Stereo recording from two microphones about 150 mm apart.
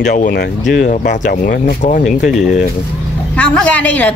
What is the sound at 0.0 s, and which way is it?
Speech, 60° left (ahead or behind).